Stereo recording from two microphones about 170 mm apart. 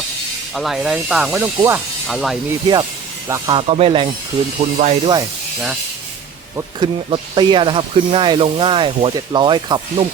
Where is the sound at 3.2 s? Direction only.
20° right (ahead or behind).